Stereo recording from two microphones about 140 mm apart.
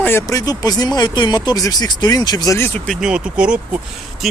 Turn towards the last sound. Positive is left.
turn(degrees=-5)  # may be behind; listen again after turning